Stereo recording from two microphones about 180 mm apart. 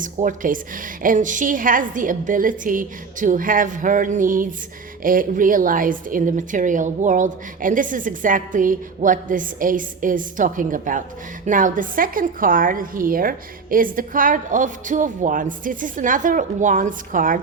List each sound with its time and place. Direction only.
0.0 s a woman's voice: 45° right (ahead or behind)